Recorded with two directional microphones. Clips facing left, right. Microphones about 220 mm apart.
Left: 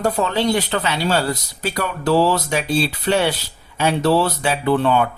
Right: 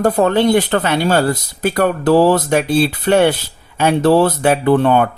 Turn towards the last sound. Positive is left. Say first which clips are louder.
# right 5 dB
turn(degrees=-50)  # may be behind; listen again after turning